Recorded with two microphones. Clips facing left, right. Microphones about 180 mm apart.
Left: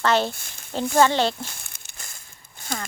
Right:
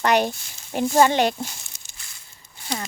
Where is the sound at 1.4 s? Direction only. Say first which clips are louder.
Right 3 dB; 55° left (ahead or behind).